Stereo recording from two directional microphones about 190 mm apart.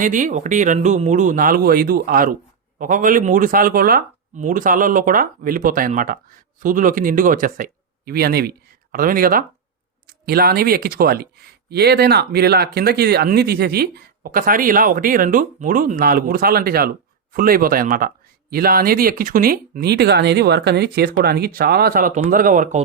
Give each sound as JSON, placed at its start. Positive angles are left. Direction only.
{"t": 0.0, "sound": "speech", "side_deg": -40}